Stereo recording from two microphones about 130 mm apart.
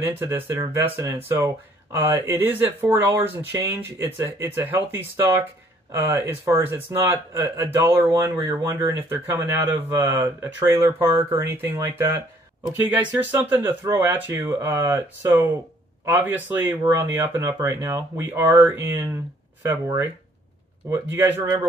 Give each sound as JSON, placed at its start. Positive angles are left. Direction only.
{"t": 0.0, "sound": "a man's voice", "side_deg": -20}
{"t": 12.7, "sound": "a man's voice", "side_deg": -15}